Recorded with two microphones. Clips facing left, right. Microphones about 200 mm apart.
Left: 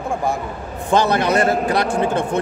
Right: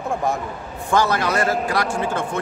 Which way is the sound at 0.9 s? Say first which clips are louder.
Left 3 dB; 20° left (ahead or behind).